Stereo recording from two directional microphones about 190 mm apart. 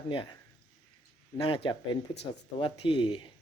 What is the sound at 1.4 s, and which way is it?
Speech, 25° left (ahead or behind).